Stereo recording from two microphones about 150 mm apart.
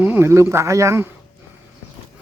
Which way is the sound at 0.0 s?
15° right (ahead or behind).